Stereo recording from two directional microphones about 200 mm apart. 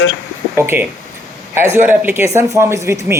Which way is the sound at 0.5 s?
10° right (ahead or behind).